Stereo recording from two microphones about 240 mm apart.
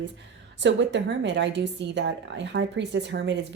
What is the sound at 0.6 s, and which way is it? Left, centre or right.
A woman's voice, right.